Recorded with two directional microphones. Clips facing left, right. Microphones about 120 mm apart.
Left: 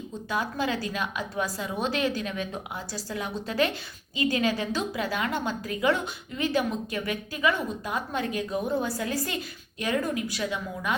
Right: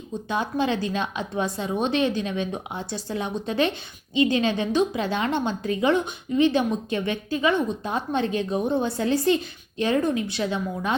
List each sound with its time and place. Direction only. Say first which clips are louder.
0.3 s a woman's voice: right 4 dB; 25° right (ahead or behind)